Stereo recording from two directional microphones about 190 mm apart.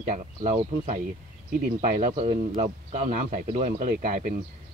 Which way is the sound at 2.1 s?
35° right (ahead or behind).